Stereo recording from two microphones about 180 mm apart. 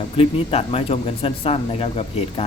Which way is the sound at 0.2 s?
35° left (ahead or behind).